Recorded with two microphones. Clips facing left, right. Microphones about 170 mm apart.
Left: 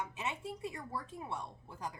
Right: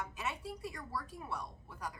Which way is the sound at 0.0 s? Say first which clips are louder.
Left 1 dB; 25° left (ahead or behind).